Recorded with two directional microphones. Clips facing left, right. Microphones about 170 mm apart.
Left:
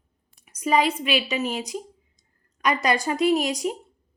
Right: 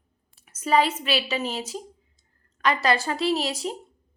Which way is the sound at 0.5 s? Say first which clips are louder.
Even; 10° left (ahead or behind).